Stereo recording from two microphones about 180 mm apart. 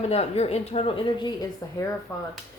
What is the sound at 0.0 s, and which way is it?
A woman's voice, 35° left (ahead or behind).